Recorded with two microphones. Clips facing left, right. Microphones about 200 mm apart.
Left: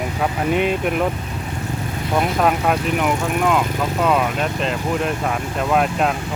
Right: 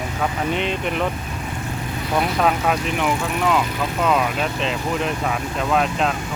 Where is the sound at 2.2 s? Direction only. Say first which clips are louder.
Left 2 dB; 5° left (ahead or behind).